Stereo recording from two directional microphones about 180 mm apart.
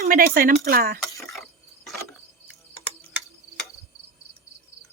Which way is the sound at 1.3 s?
Centre (ahead or behind).